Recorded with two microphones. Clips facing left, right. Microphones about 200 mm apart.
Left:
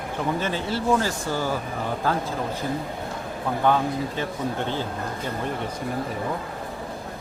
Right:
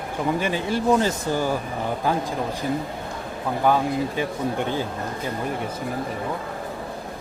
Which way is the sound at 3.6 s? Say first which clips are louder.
Right 2 dB; 10° right (ahead or behind).